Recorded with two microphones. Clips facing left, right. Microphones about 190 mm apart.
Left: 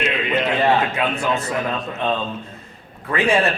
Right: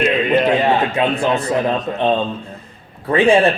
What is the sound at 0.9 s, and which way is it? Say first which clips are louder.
A man's voice: right 5 dB; 30° right (ahead or behind).